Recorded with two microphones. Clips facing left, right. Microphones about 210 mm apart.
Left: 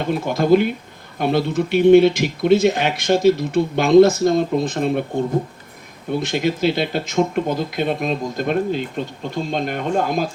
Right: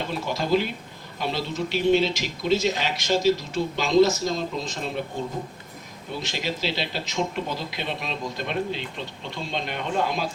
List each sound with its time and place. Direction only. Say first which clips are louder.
0.0 s speech: left 8 dB; 55° left (ahead or behind)
6.1 s speech: left 10 dB; 55° left (ahead or behind)